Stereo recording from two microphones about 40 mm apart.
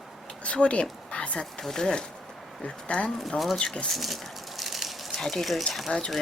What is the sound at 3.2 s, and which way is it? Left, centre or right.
Speech, centre.